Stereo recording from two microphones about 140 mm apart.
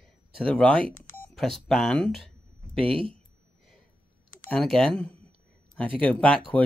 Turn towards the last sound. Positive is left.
turn(degrees=10)  # may be behind; listen again after turning